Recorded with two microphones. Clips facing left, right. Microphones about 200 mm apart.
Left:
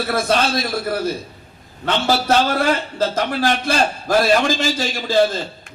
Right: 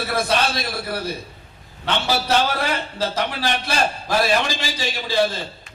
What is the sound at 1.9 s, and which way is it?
A man's voice, 50° left (ahead or behind).